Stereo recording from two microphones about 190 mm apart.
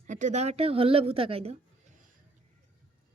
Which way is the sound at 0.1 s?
40° right (ahead or behind).